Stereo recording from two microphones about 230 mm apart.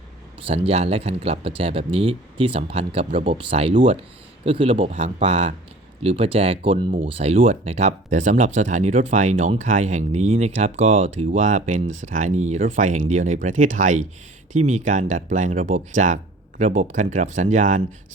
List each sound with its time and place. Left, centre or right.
0.4 s speech: right